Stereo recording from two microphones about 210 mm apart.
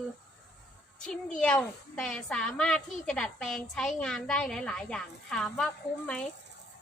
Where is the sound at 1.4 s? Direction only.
5° left (ahead or behind).